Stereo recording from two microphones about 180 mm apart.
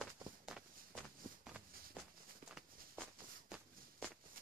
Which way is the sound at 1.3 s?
50° right (ahead or behind).